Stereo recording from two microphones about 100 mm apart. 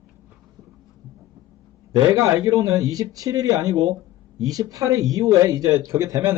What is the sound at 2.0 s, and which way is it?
A man's voice, 40° right (ahead or behind).